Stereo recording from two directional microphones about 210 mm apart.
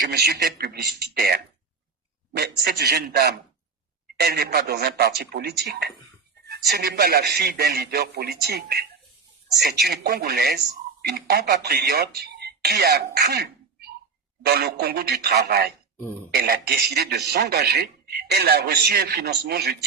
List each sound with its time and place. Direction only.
0.1 s speech: 50° right (ahead or behind)
6.7 s speech: 50° right (ahead or behind)